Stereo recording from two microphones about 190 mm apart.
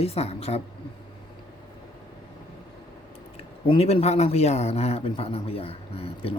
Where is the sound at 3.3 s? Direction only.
30° left (ahead or behind).